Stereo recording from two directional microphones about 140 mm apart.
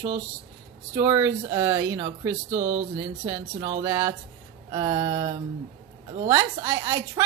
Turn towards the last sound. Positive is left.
turn(degrees=-20)  # may be behind; listen again after turning